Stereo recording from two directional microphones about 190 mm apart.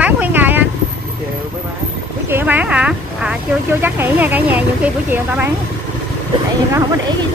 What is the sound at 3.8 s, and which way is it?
Speech, 10° right (ahead or behind).